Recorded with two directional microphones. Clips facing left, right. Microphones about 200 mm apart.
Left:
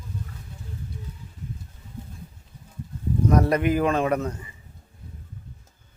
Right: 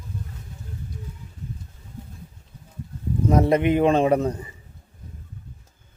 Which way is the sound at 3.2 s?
25° right (ahead or behind).